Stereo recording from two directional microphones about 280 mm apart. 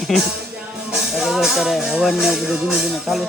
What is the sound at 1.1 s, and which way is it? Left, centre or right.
Speech, centre.